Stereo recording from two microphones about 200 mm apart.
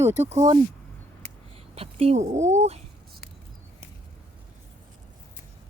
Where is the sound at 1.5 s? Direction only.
30° right (ahead or behind).